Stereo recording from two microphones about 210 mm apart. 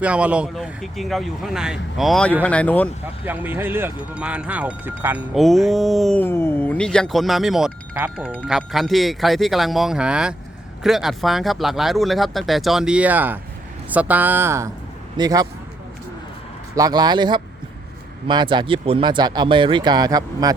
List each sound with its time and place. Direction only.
0.0 s speech: 5° right (ahead or behind)
3.2 s a woman's voice: 10° right (ahead or behind)
16.7 s speech: 20° right (ahead or behind)